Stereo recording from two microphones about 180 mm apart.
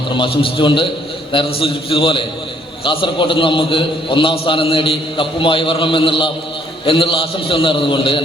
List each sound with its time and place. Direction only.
0.2 s a man's voice: 25° left (ahead or behind)